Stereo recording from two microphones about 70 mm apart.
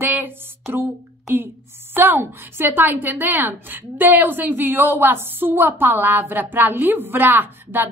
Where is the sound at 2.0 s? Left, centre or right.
Right.